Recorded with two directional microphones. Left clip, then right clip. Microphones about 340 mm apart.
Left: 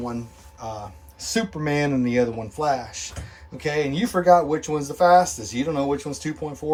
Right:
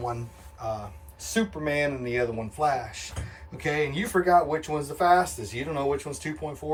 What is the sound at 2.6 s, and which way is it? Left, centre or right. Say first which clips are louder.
Speech: left 2 dB; centre.